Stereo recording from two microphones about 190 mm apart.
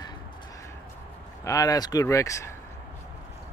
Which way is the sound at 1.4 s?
20° left (ahead or behind).